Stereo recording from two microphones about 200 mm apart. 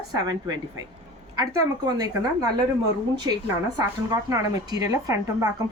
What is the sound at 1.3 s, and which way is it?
A woman's voice, 20° right (ahead or behind).